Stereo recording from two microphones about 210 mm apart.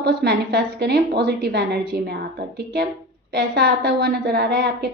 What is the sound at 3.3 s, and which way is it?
A woman's voice, 50° right (ahead or behind).